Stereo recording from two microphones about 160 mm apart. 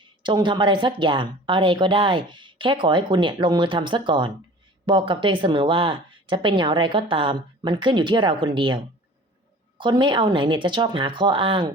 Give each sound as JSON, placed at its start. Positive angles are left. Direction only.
{"t": 0.2, "sound": "a woman's voice", "side_deg": -30}